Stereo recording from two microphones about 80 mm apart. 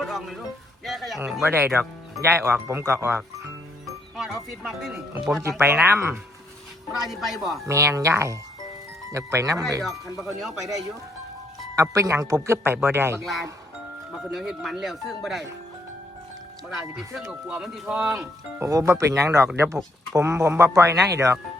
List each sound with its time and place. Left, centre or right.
0.0 s music: centre
0.9 s speech: centre
1.5 s speech: right
3.8 s speech: centre
5.4 s speech: right
5.6 s speech: right
7.0 s speech: centre
7.7 s speech: right
11.8 s speech: right
12.6 s speech: right
14.2 s speech: centre
16.6 s speech: centre
18.6 s speech: right